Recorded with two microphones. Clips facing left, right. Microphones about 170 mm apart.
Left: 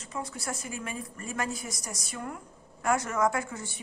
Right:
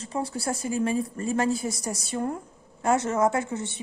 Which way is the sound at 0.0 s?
30° right (ahead or behind).